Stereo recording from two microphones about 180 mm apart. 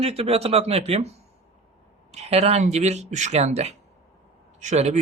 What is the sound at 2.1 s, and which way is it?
Speech, 35° right (ahead or behind).